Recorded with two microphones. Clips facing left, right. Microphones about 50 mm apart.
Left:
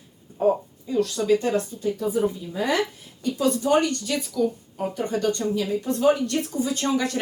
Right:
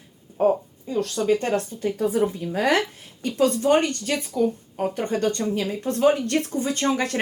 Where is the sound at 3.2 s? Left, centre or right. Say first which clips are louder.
Right 2 dB; right.